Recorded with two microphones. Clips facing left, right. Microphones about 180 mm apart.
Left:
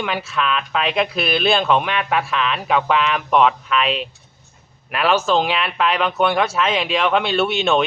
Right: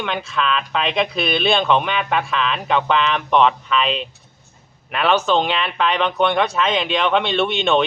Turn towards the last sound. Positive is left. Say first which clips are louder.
# even
turn(degrees=5)  # may be behind; listen again after turning